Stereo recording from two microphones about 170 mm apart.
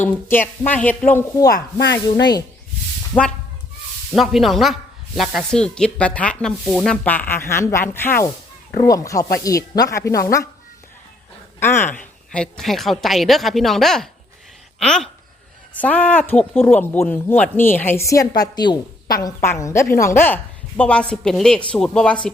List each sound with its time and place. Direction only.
0.0 s speech: 10° left (ahead or behind)
1.1 s speech: 20° left (ahead or behind)
3.1 s speech: 15° left (ahead or behind)
4.1 s speech: centre (ahead or behind); by 10.2 s 20° left (ahead or behind)
11.6 s speech: 15° left (ahead or behind)